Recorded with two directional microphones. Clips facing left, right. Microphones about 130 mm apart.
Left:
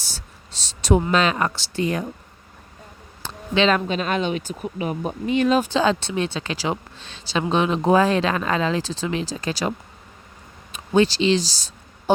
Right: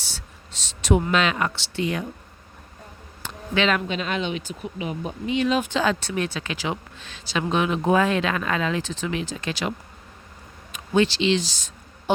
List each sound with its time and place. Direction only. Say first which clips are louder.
0.0 s a sound: left 1 dB; 40° left (ahead or behind)
1.1 s speech: left 2 dB; 35° left (ahead or behind)
3.2 s speech: left 3 dB; 30° left (ahead or behind)